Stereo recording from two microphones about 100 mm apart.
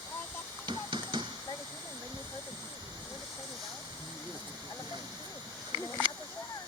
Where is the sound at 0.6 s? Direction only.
50° right (ahead or behind).